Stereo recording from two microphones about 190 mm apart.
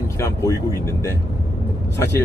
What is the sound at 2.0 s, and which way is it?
Speech, 15° left (ahead or behind).